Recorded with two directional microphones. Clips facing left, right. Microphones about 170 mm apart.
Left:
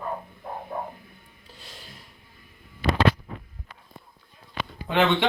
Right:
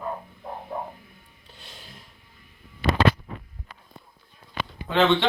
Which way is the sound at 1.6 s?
Centre (ahead or behind).